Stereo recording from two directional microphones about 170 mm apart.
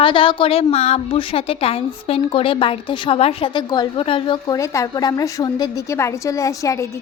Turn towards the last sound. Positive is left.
turn(degrees=20)  # may be behind; listen again after turning